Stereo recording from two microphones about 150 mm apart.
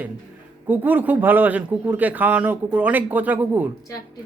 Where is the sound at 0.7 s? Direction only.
10° right (ahead or behind).